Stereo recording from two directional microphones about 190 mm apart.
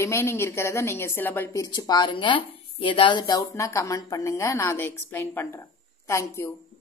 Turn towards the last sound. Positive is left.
turn(degrees=15)  # may be behind; listen again after turning